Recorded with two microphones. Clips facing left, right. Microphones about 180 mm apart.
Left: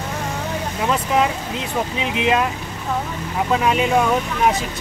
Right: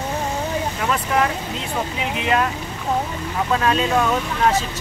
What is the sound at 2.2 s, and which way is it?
Speech, 20° left (ahead or behind).